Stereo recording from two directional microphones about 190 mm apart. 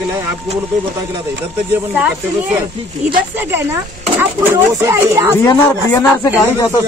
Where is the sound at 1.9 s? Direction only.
10° right (ahead or behind).